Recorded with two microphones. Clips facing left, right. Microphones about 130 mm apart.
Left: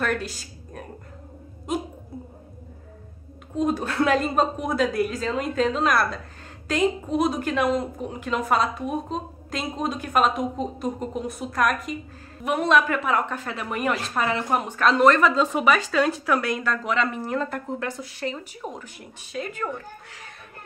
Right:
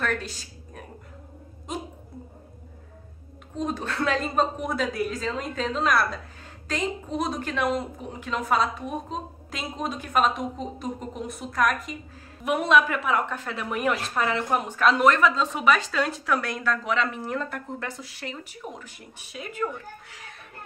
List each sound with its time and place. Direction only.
0.0 s a sound: 5° left (ahead or behind)
3.5 s a woman's voice: 5° left (ahead or behind)
18.6 s speech: 30° left (ahead or behind)
18.9 s a woman's voice: 5° right (ahead or behind)